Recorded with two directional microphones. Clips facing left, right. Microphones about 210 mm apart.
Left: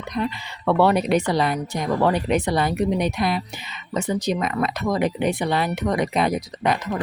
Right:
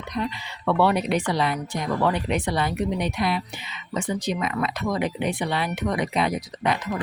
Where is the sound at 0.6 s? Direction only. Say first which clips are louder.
Left 3 dB; 45° left (ahead or behind).